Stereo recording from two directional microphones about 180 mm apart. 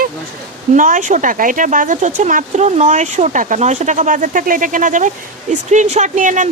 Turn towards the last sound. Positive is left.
turn(degrees=-45)  # may be behind; listen again after turning